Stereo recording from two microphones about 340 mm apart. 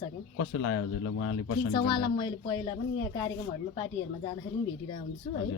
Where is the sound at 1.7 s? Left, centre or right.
Centre.